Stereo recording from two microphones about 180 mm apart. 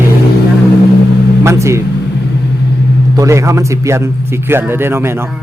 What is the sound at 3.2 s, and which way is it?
Speech, 15° right (ahead or behind).